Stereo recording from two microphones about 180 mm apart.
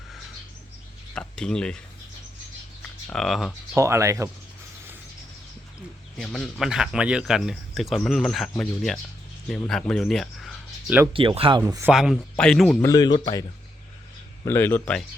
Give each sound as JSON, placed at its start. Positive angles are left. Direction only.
{"t": 1.1, "sound": "speech", "side_deg": 5}
{"t": 3.1, "sound": "speech", "side_deg": 0}
{"t": 3.8, "sound": "speech", "side_deg": -15}
{"t": 6.1, "sound": "speech", "side_deg": 0}
{"t": 11.1, "sound": "speech", "side_deg": -30}
{"t": 11.6, "sound": "speech", "side_deg": -15}
{"t": 11.9, "sound": "speech", "side_deg": -5}
{"t": 12.8, "sound": "speech", "side_deg": 20}
{"t": 14.4, "sound": "speech", "side_deg": 10}